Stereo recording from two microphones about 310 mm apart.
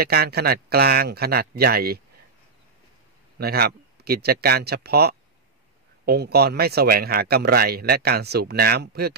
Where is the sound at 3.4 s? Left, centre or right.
Right.